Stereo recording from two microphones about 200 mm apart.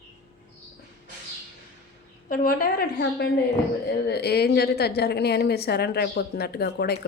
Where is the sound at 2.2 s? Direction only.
45° left (ahead or behind).